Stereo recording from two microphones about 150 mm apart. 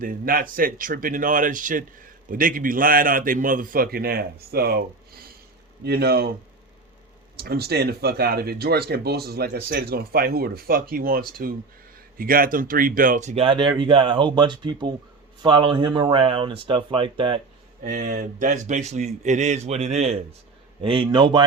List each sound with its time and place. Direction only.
0.0 s a man's voice: 70° right (ahead or behind); by 6.3 s 90° right
7.3 s speech: 90° right; by 17.4 s 35° right (ahead or behind)
17.8 s speech: 65° right (ahead or behind); by 20.1 s 45° right (ahead or behind)
20.8 s speech: 35° right (ahead or behind)